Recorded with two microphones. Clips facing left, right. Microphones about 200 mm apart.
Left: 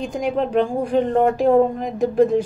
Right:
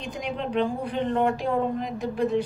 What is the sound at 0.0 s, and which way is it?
Speech, 50° left (ahead or behind).